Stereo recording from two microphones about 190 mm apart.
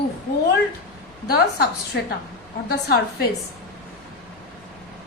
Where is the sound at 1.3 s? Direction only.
60° left (ahead or behind).